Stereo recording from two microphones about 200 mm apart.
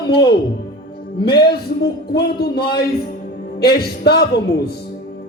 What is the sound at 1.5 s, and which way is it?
Speech, 55° left (ahead or behind).